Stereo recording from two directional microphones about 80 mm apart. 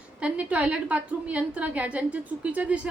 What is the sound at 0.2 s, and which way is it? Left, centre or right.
A woman's voice, centre.